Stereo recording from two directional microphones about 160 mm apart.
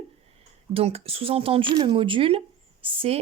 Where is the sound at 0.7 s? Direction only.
40° right (ahead or behind).